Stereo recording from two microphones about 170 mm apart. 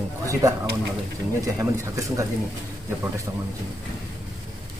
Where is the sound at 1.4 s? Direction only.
20° right (ahead or behind).